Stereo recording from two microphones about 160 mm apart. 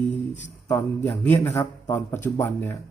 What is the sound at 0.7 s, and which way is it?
A man's voice, 15° left (ahead or behind).